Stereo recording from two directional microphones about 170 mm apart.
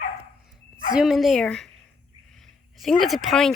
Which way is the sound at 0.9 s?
Centre (ahead or behind).